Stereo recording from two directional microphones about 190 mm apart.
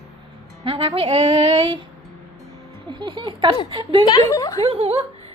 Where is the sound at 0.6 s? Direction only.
30° right (ahead or behind).